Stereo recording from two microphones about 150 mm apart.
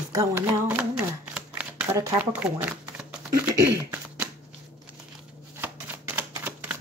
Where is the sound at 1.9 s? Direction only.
20° right (ahead or behind).